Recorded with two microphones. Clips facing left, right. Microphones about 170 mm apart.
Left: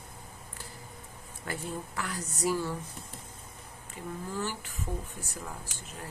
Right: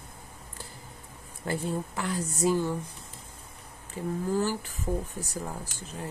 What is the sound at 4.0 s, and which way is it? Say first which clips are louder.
Speech: right 8 dB; 35° right (ahead or behind).